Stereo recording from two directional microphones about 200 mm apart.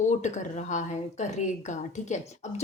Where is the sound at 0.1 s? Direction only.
35° left (ahead or behind).